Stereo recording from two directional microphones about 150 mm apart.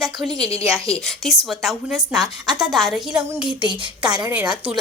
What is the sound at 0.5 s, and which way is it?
Speech, 20° right (ahead or behind).